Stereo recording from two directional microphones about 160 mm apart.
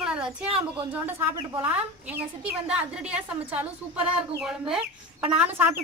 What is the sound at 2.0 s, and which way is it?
A woman's voice, 10° right (ahead or behind).